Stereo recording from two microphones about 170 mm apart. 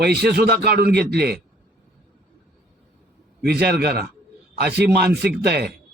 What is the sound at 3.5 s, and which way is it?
A man's voice, 70° right (ahead or behind).